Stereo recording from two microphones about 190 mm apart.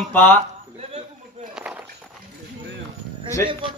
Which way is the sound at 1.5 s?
5° right (ahead or behind).